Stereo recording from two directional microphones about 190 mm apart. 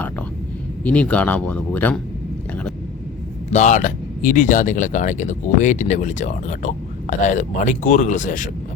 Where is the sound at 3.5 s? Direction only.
40° left (ahead or behind).